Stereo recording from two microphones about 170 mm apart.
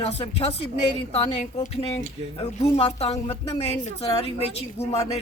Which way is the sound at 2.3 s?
35° left (ahead or behind).